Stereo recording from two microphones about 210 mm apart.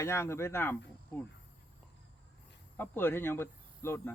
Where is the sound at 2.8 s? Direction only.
10° left (ahead or behind).